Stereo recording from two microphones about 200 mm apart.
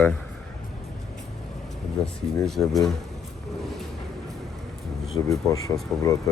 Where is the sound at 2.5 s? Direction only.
Centre (ahead or behind).